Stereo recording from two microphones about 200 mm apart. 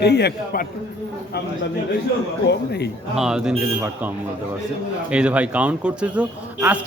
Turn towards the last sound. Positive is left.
turn(degrees=-5)  # may be behind; listen again after turning